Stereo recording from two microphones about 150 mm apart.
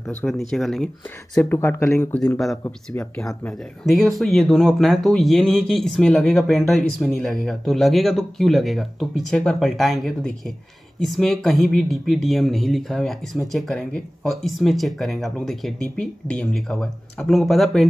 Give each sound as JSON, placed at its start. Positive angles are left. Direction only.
{"t": 0.3, "sound": "speech", "side_deg": 0}
{"t": 1.4, "sound": "speech", "side_deg": 15}
{"t": 3.4, "sound": "speech", "side_deg": 0}